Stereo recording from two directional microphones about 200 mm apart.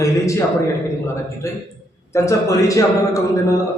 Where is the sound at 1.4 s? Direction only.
15° left (ahead or behind).